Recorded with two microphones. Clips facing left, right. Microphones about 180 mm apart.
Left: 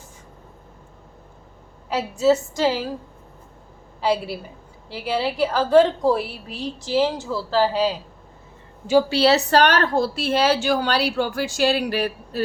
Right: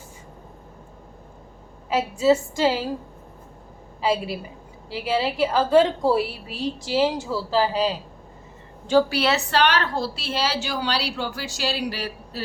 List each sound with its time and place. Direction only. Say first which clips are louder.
1.9 s a woman's voice: even; 5° right (ahead or behind)
4.0 s a woman's voice: left 1 dB; centre (ahead or behind)
9.0 s a woman's voice: left 5 dB; 30° left (ahead or behind); by 12.4 s 55° left (ahead or behind)